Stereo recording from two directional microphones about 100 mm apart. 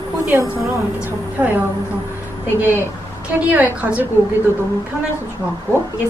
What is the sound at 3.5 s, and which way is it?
Speech, 15° right (ahead or behind).